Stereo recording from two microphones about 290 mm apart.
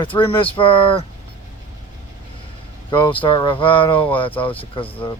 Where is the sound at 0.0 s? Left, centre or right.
Centre.